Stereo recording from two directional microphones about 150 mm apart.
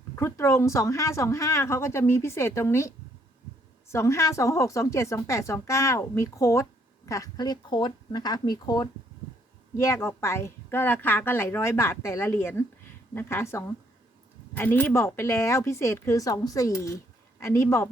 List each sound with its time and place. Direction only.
0.2 s a woman's voice: 20° left (ahead or behind)
3.9 s a woman's voice: 20° left (ahead or behind)